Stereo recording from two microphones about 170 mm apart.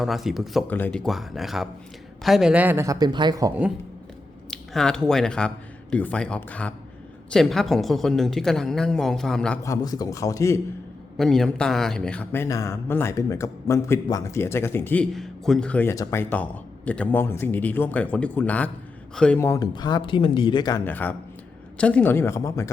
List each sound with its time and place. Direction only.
0.0 s speech: centre (ahead or behind)
0.7 s a man's voice: 10° left (ahead or behind); by 3.5 s 25° right (ahead or behind)
4.5 s speech: 5° left (ahead or behind)
9.6 s speech: 20° left (ahead or behind)
11.2 s speech: centre (ahead or behind)
15.1 s speech: centre (ahead or behind); by 20.8 s 25° left (ahead or behind)
20.8 s speech: 10° left (ahead or behind)